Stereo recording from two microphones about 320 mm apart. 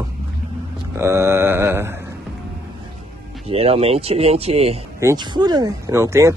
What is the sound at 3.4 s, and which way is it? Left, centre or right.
Speech, centre.